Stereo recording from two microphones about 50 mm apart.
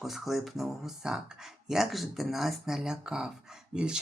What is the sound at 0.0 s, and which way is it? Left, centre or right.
Speech, centre.